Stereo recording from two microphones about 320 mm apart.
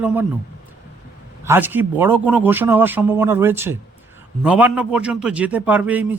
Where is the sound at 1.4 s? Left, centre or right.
Centre.